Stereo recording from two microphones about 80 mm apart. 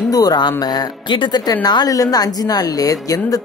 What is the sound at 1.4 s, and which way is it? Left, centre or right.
Speech, left.